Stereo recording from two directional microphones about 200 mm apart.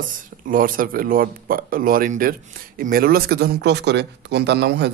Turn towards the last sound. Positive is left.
turn(degrees=-55)  # may be behind; listen again after turning